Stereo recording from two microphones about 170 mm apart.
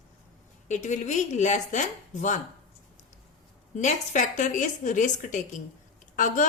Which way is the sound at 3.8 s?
45° left (ahead or behind).